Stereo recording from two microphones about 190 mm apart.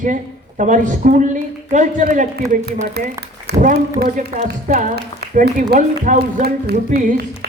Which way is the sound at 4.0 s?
40° right (ahead or behind).